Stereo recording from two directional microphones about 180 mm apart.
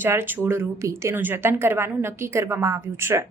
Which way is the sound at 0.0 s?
10° right (ahead or behind).